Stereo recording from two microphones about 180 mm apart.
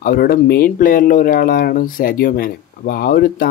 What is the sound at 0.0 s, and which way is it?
Speech, 55° left (ahead or behind).